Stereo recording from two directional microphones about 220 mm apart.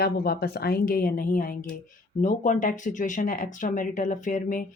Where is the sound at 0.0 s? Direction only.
45° left (ahead or behind).